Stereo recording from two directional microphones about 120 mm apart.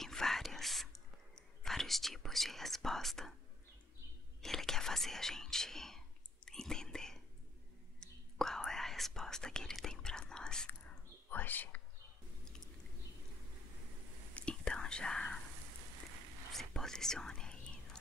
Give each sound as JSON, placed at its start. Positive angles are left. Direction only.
{"t": 0.0, "sound": "whispering", "side_deg": 5}
{"t": 4.4, "sound": "whispering", "side_deg": 5}
{"t": 14.3, "sound": "whispering", "side_deg": 10}
{"t": 16.5, "sound": "whispering", "side_deg": 5}